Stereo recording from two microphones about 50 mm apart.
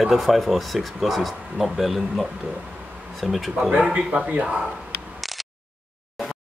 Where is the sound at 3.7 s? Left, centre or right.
Centre.